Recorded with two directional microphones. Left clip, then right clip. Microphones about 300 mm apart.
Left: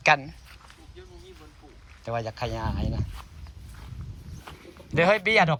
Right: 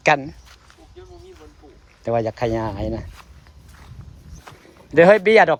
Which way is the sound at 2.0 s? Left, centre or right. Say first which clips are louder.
Right 10 dB; right.